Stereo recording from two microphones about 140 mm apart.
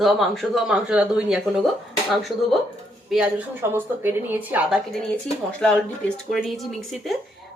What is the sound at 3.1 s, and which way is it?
Speech, 5° right (ahead or behind).